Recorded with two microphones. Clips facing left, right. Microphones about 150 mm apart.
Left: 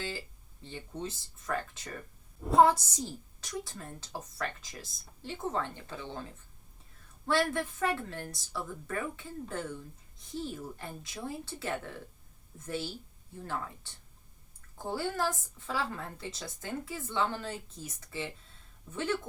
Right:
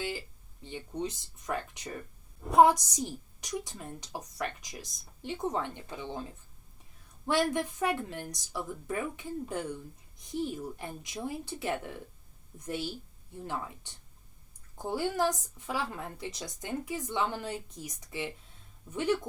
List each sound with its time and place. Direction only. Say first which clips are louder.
0.6 s a woman's voice: right 4 dB; 15° right (ahead or behind)
7.3 s a woman's voice: right 1 dB; 15° right (ahead or behind)